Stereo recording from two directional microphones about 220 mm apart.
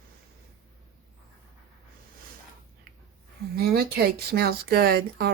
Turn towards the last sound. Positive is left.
turn(degrees=-45)  # may be behind; listen again after turning